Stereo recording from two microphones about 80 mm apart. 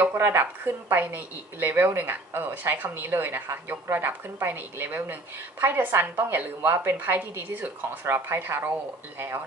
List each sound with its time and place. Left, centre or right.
0.0 s a woman's voice: right